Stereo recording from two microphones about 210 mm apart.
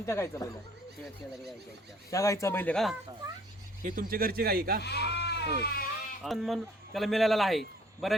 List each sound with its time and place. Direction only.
0.0 s speech: 15° left (ahead or behind)
2.0 s speech: 15° left (ahead or behind)
3.8 s speech: 40° right (ahead or behind)
4.8 s speech: 50° left (ahead or behind)
6.2 s speech: centre (ahead or behind)